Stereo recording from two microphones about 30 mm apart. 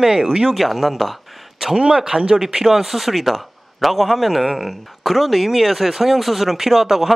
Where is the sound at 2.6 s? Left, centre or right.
Centre.